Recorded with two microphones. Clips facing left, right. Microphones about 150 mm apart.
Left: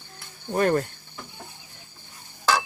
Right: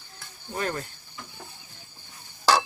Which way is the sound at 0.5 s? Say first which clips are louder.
Left 9 dB; 50° left (ahead or behind).